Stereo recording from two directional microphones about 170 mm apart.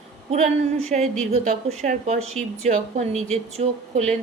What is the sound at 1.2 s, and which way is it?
A woman's voice, 40° right (ahead or behind).